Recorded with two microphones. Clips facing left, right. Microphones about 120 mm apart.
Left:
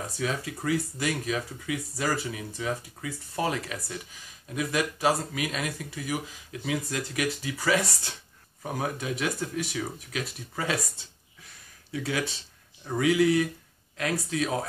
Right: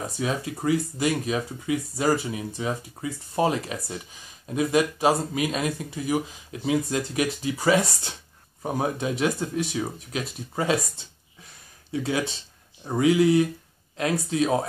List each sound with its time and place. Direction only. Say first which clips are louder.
0.2 s speech: right 3 dB; 25° right (ahead or behind)
11.9 s speech: right 4 dB; 25° right (ahead or behind)